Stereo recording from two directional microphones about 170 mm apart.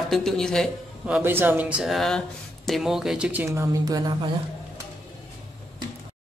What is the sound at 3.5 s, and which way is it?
Speech, 20° right (ahead or behind).